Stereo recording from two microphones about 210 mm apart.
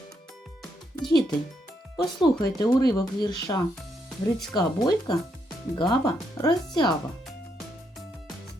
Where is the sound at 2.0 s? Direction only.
20° left (ahead or behind).